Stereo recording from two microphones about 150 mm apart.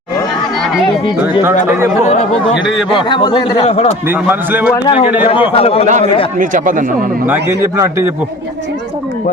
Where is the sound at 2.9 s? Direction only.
35° left (ahead or behind).